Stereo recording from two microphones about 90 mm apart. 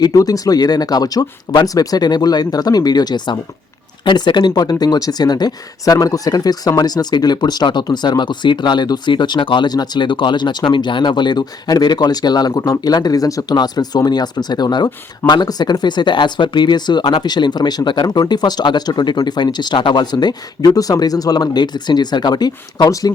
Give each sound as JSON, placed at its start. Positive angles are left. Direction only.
{"t": 0.0, "sound": "speech", "side_deg": 45}
{"t": 4.0, "sound": "speech", "side_deg": 60}
{"t": 9.6, "sound": "speech", "side_deg": 50}